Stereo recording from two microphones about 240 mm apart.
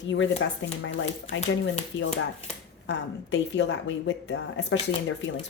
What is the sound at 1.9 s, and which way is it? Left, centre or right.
A woman's voice, left.